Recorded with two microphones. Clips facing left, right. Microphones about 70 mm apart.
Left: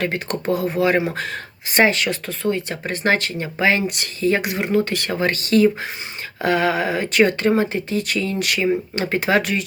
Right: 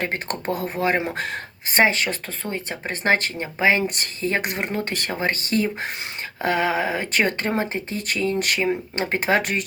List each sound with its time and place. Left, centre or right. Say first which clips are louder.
0.0 s speech: left 3 dB; right
4.9 s speech: left 3 dB; right